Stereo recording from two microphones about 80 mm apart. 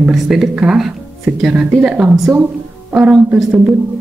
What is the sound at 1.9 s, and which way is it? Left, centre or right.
A woman's voice, centre.